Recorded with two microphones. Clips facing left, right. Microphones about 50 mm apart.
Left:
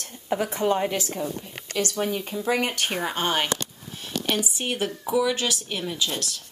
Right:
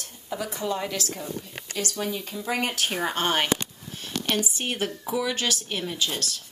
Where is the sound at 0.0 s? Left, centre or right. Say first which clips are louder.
Left 6 dB; left; by 1.3 s centre.